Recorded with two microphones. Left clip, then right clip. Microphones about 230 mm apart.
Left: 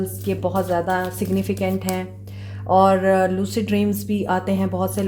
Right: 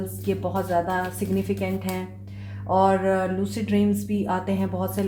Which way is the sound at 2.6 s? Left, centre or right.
Left.